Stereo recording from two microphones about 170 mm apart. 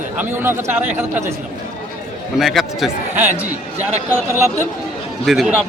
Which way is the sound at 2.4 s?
Centre (ahead or behind).